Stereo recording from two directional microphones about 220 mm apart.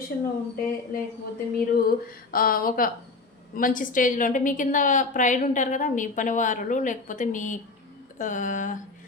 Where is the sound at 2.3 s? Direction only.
40° left (ahead or behind).